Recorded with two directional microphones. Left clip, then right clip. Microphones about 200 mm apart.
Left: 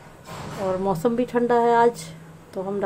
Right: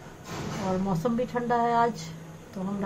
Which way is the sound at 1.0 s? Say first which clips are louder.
Left 7 dB; 55° left (ahead or behind).